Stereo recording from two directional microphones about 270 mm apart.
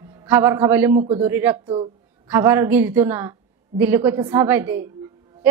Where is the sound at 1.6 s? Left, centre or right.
Centre.